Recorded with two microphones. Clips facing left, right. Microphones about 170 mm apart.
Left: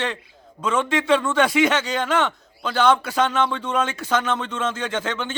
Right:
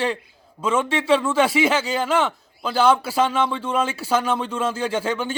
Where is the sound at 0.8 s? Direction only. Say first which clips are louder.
Left 1 dB; 30° right (ahead or behind).